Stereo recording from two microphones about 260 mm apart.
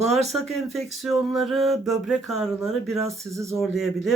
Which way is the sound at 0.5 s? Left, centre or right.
Centre.